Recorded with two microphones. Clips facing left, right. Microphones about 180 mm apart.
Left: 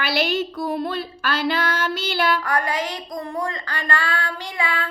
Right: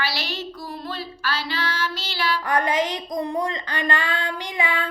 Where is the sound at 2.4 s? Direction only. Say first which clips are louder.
Right 2 dB; 20° right (ahead or behind).